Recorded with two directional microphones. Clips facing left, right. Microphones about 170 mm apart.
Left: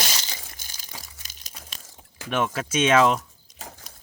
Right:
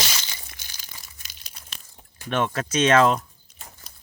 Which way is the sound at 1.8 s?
90° left.